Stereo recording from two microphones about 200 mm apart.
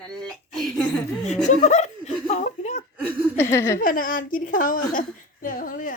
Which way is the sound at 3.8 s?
45° left (ahead or behind).